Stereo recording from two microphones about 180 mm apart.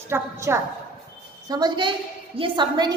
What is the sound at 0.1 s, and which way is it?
A woman's voice, 15° right (ahead or behind).